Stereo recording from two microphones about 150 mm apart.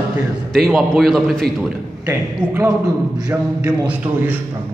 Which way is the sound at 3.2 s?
25° right (ahead or behind).